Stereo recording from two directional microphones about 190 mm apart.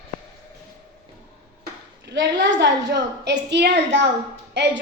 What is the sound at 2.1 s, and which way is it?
A woman's voice, 65° right (ahead or behind).